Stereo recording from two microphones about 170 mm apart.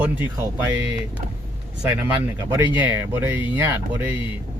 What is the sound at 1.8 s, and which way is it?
Speech, 15° right (ahead or behind).